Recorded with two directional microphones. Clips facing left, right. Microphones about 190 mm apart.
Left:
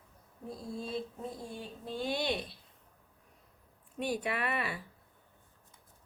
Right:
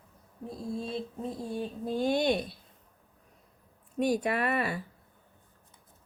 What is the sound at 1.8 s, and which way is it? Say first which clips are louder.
Speech: right 7 dB; 45° right (ahead or behind).